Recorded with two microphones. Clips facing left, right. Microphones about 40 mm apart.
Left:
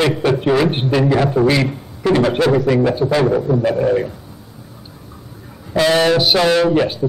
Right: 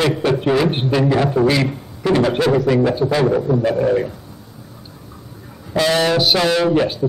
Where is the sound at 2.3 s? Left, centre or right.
Centre.